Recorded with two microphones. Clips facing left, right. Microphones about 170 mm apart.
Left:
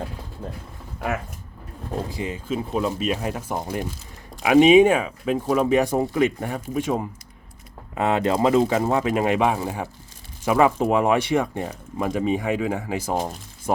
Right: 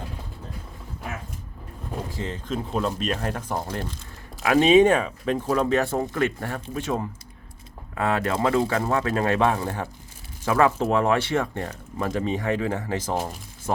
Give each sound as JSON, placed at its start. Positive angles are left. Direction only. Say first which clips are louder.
{"t": 2.0, "sound": "speech", "louder": "left 3 dB", "side_deg": 15}